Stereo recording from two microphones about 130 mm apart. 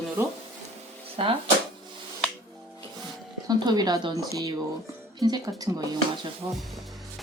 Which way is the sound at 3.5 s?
30° right (ahead or behind).